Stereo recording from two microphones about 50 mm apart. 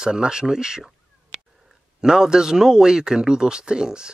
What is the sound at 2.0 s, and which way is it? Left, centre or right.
Speech, centre.